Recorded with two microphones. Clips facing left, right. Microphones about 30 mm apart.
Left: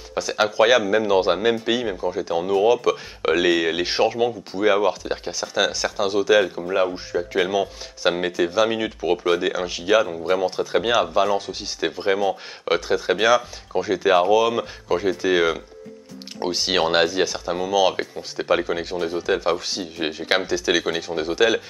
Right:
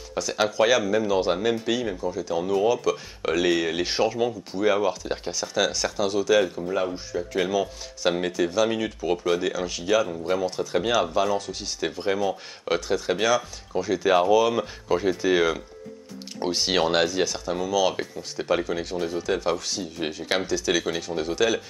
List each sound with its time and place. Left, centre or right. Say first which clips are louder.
0.1 s speech: left 3 dB; centre